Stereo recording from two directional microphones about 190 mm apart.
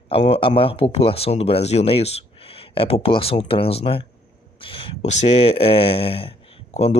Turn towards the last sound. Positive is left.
turn(degrees=35)  # may be behind; listen again after turning